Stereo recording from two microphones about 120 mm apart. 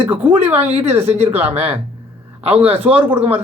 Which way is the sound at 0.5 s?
60° right (ahead or behind).